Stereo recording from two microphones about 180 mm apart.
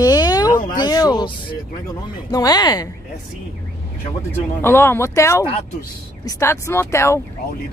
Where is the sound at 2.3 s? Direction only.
20° left (ahead or behind).